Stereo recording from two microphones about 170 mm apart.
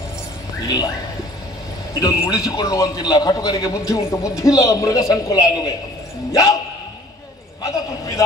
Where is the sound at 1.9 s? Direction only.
20° left (ahead or behind).